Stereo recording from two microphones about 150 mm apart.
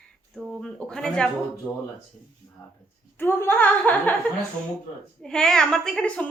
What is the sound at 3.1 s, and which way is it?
A woman's voice, 15° left (ahead or behind).